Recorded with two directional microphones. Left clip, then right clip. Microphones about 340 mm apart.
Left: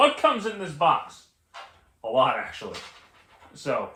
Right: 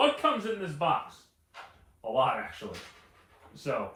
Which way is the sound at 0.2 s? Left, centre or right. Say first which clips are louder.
Left 5 dB; centre.